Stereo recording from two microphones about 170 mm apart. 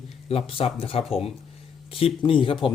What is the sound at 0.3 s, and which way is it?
Speech, 35° left (ahead or behind).